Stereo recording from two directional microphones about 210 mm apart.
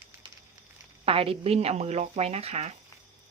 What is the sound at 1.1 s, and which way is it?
A woman's voice, 25° right (ahead or behind).